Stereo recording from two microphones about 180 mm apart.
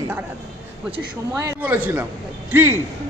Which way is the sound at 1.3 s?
15° right (ahead or behind).